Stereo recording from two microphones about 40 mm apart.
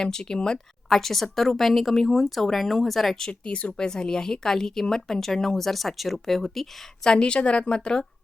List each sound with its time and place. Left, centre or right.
0.0 s a woman's voice: centre
0.9 s speech: centre
3.2 s a woman's voice: left
3.7 s a woman's voice: centre
7.0 s a woman's voice: left